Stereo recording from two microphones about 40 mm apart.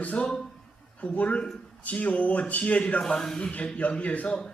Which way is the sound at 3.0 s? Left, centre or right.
Centre.